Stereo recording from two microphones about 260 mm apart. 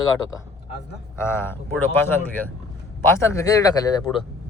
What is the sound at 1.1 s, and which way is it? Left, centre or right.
Speech, centre.